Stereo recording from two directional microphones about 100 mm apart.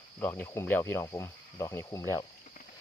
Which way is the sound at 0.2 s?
20° left (ahead or behind).